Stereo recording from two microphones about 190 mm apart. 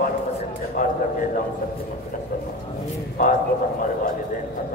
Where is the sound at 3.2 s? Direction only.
45° left (ahead or behind).